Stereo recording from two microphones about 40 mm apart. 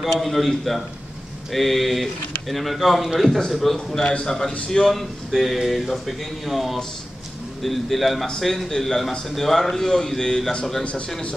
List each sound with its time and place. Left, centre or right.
0.1 s speech: centre
10.8 s speech: left